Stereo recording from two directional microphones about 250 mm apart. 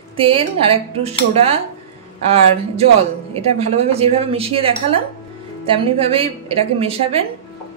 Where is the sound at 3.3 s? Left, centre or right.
Right.